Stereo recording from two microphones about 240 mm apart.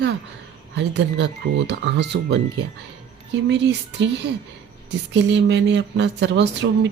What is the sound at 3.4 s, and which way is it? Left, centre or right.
Speech, right.